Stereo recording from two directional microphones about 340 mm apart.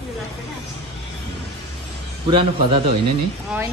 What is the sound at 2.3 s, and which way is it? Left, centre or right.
Speech, centre.